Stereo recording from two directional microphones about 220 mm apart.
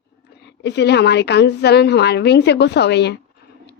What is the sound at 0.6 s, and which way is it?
Speech, 50° left (ahead or behind).